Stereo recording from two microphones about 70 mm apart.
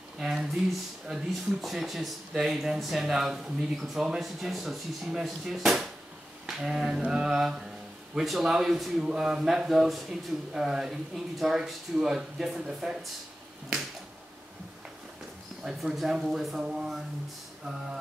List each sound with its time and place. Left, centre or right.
0.2 s a sound: centre
1.0 s speech: centre
6.4 s mantra: centre
15.6 s speech: centre